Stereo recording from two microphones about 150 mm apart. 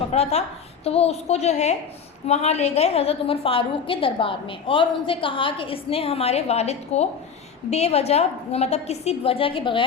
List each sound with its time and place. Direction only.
0.1 s a woman's voice: 45° left (ahead or behind)